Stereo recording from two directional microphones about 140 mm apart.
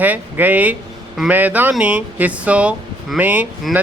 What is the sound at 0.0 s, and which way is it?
A woman's voice, 10° right (ahead or behind).